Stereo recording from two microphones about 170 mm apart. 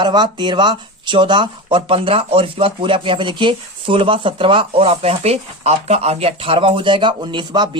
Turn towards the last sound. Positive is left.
turn(degrees=-25)  # may be behind; listen again after turning